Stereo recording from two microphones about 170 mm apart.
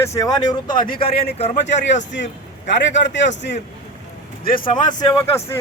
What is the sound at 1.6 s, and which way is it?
Speech, 90° left.